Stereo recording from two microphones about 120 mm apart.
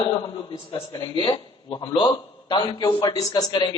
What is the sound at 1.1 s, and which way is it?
A woman's voice, 45° left (ahead or behind).